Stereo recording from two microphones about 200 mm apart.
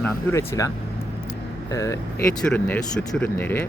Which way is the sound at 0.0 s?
15° left (ahead or behind).